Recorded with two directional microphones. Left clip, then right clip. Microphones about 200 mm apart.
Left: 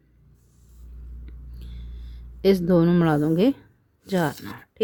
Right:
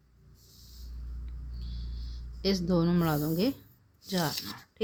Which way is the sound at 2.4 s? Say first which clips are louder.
Left 10 dB; 40° left (ahead or behind).